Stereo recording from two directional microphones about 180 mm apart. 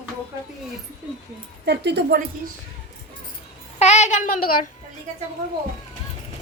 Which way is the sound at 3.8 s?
40° left (ahead or behind).